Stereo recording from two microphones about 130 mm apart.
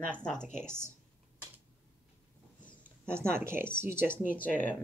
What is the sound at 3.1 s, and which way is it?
Speech, 20° right (ahead or behind).